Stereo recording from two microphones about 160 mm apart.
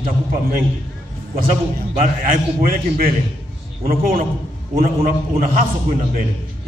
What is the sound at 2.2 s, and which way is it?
A man's voice, 60° right (ahead or behind).